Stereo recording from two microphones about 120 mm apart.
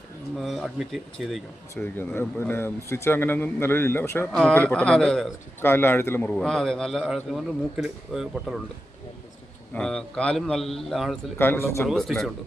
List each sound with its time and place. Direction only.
0.3 s a man's voice: centre (ahead or behind)
1.7 s speech: 15° left (ahead or behind)
4.3 s a man's voice: 5° left (ahead or behind)
5.6 s a man's voice: 20° left (ahead or behind); by 8.5 s centre (ahead or behind)
9.7 s a man's voice: 5° left (ahead or behind)
11.3 s speech: 20° left (ahead or behind)
11.9 s a man's voice: centre (ahead or behind)